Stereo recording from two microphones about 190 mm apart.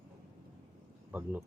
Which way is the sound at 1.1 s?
10° right (ahead or behind).